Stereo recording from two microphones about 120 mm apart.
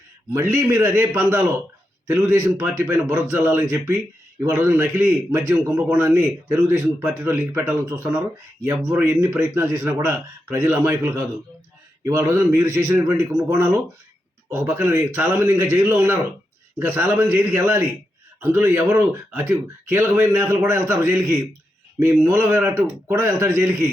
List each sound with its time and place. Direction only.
0.3 s a man's voice: 20° right (ahead or behind)